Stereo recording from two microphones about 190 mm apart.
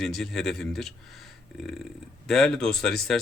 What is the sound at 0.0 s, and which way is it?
Speech, centre (ahead or behind).